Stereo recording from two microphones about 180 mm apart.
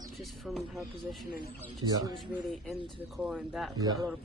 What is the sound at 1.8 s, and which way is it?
Speech, 20° right (ahead or behind).